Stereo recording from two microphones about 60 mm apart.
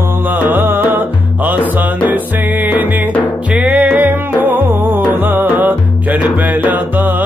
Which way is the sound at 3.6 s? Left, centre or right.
Right.